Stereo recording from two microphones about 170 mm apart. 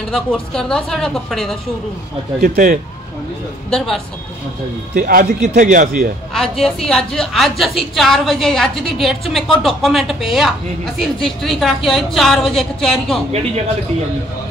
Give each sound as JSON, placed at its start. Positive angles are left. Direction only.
{"t": 0.1, "sound": "a woman's voice", "side_deg": 5}
{"t": 2.4, "sound": "speech", "side_deg": -55}
{"t": 3.7, "sound": "a woman's voice", "side_deg": 0}
{"t": 4.9, "sound": "speech", "side_deg": -55}
{"t": 6.3, "sound": "a woman's voice", "side_deg": 0}